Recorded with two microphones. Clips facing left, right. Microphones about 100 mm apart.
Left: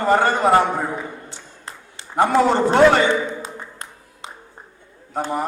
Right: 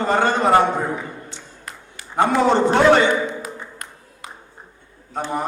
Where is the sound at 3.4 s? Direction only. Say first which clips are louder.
Even; 25° left (ahead or behind).